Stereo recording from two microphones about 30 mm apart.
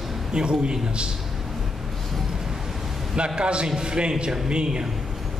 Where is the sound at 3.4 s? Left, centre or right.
Right.